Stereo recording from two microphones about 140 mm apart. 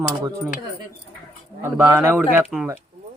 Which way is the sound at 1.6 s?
25° right (ahead or behind).